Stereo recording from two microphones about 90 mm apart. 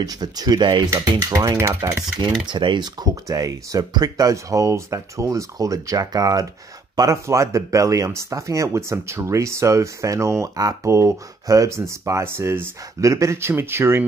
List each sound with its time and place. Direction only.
0.0 s speech: 50° right (ahead or behind)
2.4 s speech: 65° right (ahead or behind); by 14.0 s 30° right (ahead or behind)